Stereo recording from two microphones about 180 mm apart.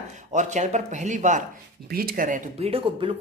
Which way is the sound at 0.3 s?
40° right (ahead or behind).